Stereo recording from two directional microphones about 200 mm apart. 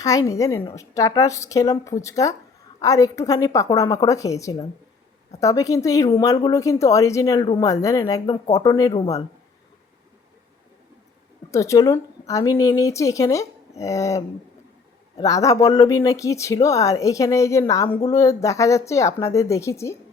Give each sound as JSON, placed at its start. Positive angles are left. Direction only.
{"t": 0.0, "sound": "speech", "side_deg": 15}
{"t": 11.5, "sound": "speech", "side_deg": 15}